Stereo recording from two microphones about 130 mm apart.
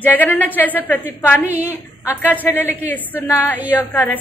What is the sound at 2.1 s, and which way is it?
Speech, 15° left (ahead or behind).